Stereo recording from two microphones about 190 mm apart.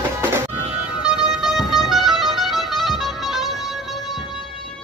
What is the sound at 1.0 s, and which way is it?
Music, centre (ahead or behind).